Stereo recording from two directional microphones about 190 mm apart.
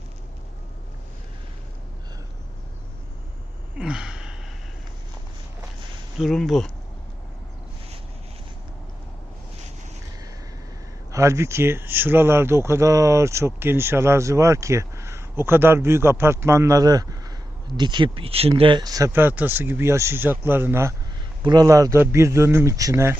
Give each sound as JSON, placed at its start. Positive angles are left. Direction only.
{"t": 3.8, "sound": "gasp", "side_deg": -5}
{"t": 6.1, "sound": "speech", "side_deg": 0}
{"t": 11.1, "sound": "speech", "side_deg": -15}